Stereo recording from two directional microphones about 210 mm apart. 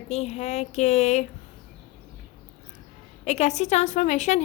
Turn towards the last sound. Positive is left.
turn(degrees=35)  # may be behind; listen again after turning